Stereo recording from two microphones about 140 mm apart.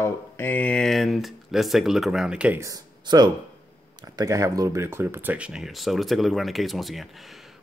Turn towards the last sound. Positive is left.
turn(degrees=0)  # may be behind; listen again after turning